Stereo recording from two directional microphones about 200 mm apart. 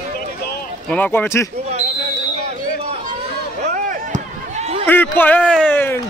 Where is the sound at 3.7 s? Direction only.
35° right (ahead or behind).